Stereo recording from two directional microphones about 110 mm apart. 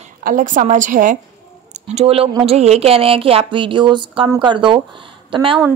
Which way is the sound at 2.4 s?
75° right (ahead or behind).